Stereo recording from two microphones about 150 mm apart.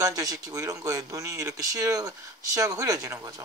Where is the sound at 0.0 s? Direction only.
25° right (ahead or behind).